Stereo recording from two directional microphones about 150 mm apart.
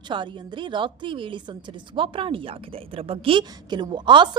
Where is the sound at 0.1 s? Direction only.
30° right (ahead or behind).